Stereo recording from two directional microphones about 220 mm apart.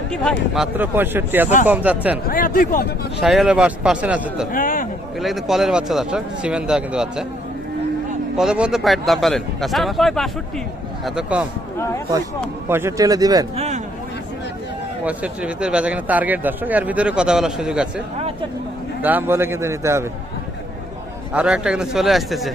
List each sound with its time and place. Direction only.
0.5 s a man's voice: 5° right (ahead or behind)
2.2 s speech: 40° left (ahead or behind)
3.2 s speech: centre (ahead or behind)
4.5 s speech: 40° left (ahead or behind)
5.2 s speech: centre (ahead or behind)
8.4 s speech: 5° right (ahead or behind)
12.6 s a man's voice: 10° right (ahead or behind)
13.6 s a sound: 30° right (ahead or behind)
15.0 s speech: 5° right (ahead or behind)
19.0 s a man's voice: 10° right (ahead or behind)
21.3 s speech: 5° right (ahead or behind)